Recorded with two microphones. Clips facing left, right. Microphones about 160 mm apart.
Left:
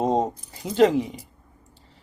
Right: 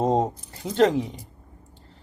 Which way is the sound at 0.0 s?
Centre (ahead or behind).